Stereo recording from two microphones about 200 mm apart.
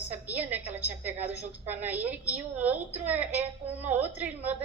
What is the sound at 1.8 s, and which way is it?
A woman's voice, 10° right (ahead or behind).